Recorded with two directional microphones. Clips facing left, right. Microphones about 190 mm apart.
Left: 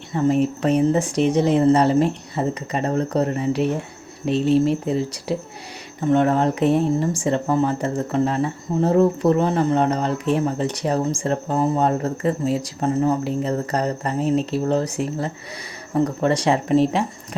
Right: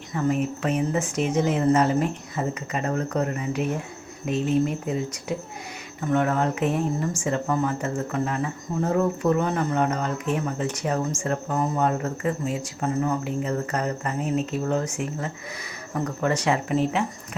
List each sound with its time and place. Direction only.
0.1 s speech: 30° left (ahead or behind)